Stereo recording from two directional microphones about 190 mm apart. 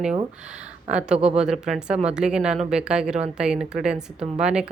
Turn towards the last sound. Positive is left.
turn(degrees=-5)  # may be behind; listen again after turning